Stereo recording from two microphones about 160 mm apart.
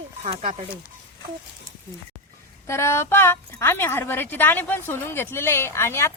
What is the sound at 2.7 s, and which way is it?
A woman's voice, 15° left (ahead or behind).